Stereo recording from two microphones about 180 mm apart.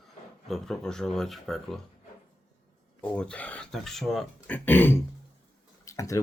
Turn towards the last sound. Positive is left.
turn(degrees=15)  # may be behind; listen again after turning